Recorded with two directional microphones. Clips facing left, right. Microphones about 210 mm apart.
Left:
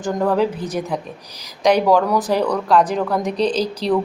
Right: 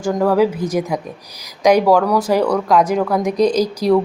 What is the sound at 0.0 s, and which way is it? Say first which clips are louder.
A woman's voice: right 3 dB; 5° right (ahead or behind).